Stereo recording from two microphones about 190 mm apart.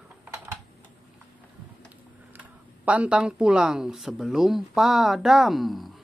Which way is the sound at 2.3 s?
10° right (ahead or behind).